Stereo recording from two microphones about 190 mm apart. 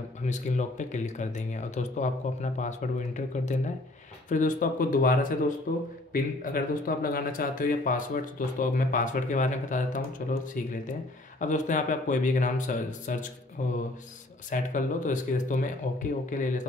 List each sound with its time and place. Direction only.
0.2 s speech: 40° left (ahead or behind)